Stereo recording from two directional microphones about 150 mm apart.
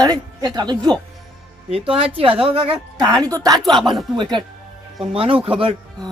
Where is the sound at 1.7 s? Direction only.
40° right (ahead or behind).